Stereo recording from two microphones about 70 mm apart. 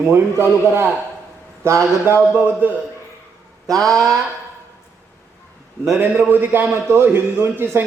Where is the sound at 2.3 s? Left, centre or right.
Right.